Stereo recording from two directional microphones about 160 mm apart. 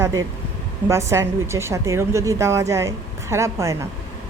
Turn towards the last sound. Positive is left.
turn(degrees=-20)  # may be behind; listen again after turning